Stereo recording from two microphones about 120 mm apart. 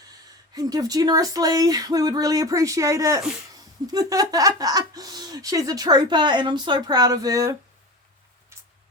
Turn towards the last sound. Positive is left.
turn(degrees=-30)  # may be behind; listen again after turning